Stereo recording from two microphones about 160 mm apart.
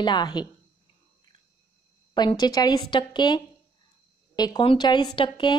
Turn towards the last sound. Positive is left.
turn(degrees=30)  # may be behind; listen again after turning